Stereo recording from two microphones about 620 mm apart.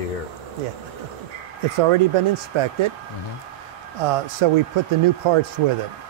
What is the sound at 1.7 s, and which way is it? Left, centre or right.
Speech, right.